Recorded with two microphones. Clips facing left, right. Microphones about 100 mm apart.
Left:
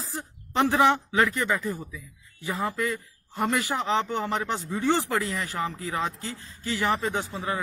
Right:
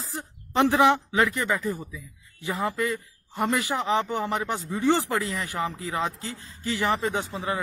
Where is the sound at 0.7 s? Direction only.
15° right (ahead or behind).